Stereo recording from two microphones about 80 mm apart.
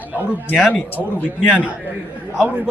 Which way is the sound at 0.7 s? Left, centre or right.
Left.